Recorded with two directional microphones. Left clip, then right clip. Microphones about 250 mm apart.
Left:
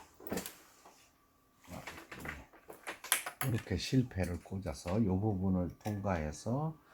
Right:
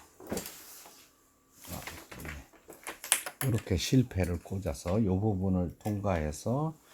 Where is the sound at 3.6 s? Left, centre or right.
Right.